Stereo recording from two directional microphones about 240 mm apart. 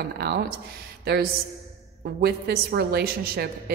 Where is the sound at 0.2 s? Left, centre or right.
Right.